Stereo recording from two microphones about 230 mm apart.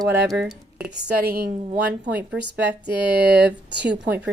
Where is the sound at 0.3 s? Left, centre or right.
Centre.